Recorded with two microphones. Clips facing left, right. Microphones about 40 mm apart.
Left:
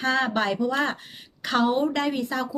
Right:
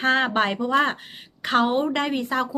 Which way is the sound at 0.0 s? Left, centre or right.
Right.